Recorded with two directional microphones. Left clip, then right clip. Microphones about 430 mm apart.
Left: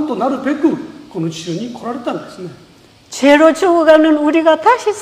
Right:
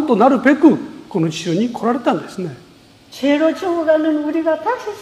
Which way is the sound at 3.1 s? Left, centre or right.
Left.